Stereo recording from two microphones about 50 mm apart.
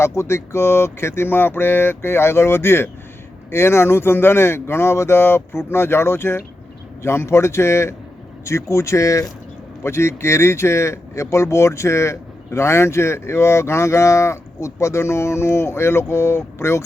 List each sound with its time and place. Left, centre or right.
0.0 s speech: left
8.7 s speech: left
9.8 s speech: left